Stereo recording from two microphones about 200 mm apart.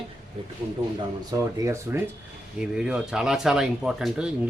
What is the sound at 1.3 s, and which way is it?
Speech, 15° right (ahead or behind).